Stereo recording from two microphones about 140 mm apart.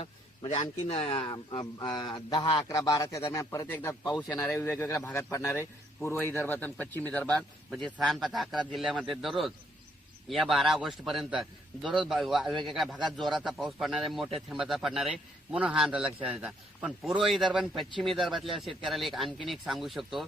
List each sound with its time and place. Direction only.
0.0 s a man's voice: 45° left (ahead or behind); by 3.9 s 25° left (ahead or behind)
4.0 s a man's voice: 10° left (ahead or behind)